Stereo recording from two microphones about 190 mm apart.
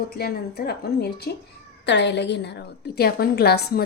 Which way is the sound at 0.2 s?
55° left (ahead or behind).